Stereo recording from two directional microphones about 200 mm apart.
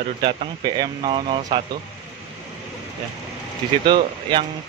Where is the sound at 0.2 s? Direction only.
25° right (ahead or behind).